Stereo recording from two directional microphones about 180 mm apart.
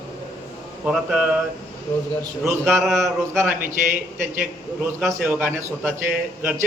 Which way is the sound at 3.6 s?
45° right (ahead or behind).